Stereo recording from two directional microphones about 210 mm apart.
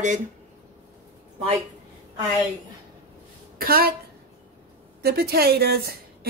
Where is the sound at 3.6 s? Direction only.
45° right (ahead or behind).